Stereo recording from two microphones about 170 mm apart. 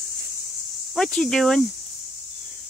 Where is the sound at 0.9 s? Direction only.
5° left (ahead or behind).